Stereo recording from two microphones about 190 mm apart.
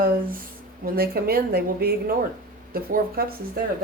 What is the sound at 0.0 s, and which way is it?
Speech, 50° right (ahead or behind).